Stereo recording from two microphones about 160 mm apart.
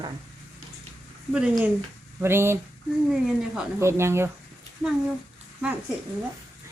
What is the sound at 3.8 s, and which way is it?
Speech, 15° right (ahead or behind).